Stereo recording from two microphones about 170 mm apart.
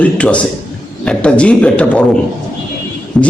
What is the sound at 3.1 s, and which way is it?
Speech, 5° left (ahead or behind).